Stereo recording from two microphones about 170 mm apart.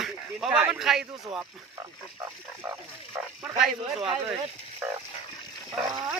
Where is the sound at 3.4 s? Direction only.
Centre (ahead or behind).